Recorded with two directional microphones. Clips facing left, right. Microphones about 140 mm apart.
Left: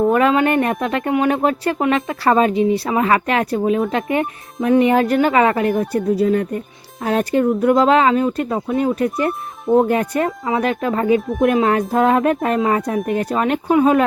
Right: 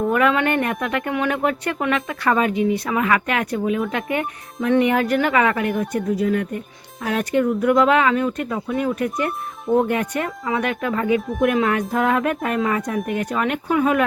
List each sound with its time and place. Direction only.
0.1 s speech: 25° left (ahead or behind)